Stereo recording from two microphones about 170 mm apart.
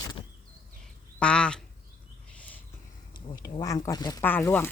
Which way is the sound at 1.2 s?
5° left (ahead or behind).